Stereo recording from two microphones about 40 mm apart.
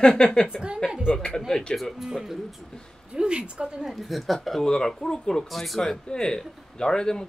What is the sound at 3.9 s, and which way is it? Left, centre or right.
Speech, centre.